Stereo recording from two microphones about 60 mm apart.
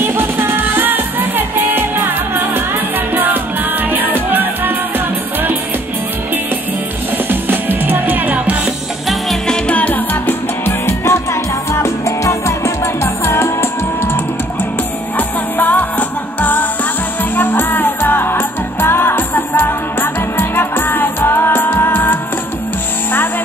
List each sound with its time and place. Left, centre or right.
0.0 s music: right
7.2 s music: right
9.5 s music: left
11.7 s music: left
15.1 s music: left